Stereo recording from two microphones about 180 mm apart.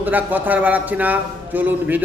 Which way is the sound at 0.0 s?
10° right (ahead or behind).